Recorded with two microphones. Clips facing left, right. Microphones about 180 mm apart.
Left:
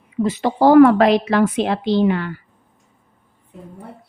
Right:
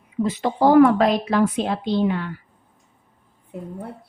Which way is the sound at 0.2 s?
85° left.